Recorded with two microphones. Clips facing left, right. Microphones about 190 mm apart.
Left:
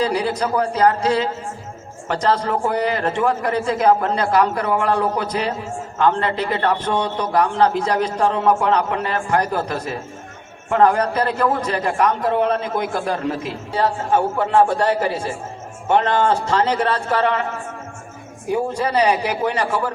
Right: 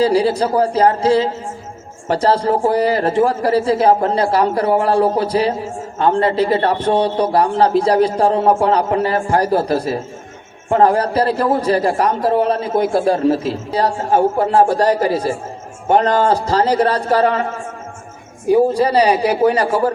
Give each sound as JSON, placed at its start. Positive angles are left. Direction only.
{"t": 0.0, "sound": "a man's voice", "side_deg": -30}
{"t": 18.4, "sound": "a man's voice", "side_deg": -35}